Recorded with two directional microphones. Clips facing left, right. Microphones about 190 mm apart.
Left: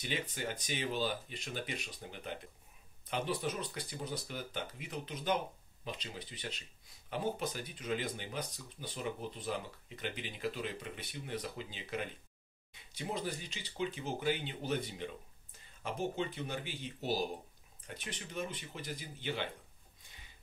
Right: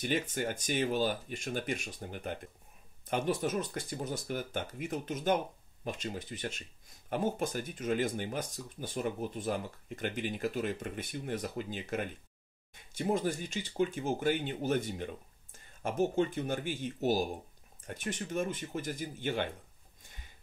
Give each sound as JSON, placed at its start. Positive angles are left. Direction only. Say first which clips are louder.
{"t": 0.0, "sound": "speech", "louder": "right 6 dB", "side_deg": -50}